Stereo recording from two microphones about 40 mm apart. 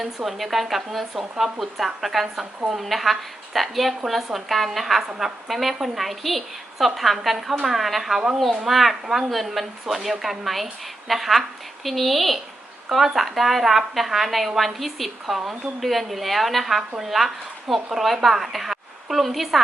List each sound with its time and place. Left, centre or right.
0.3 s a woman's voice: centre